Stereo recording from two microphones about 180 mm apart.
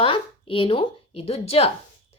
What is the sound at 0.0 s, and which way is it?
A woman's voice, 30° left (ahead or behind).